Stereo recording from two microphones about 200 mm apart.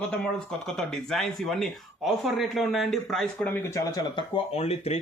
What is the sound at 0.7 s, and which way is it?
Speech, centre (ahead or behind).